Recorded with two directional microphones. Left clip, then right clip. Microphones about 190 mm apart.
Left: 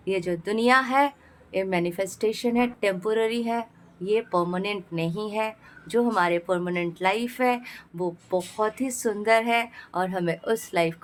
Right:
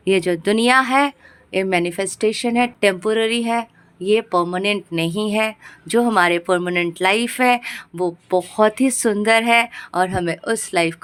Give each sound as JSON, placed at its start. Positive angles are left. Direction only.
{"t": 0.0, "sound": "a woman's voice", "side_deg": -35}